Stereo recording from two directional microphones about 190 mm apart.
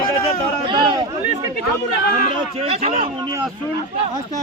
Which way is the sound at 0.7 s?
25° right (ahead or behind).